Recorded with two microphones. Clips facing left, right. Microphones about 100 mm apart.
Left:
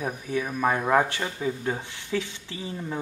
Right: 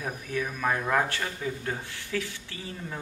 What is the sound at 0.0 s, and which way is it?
Speech, 15° left (ahead or behind).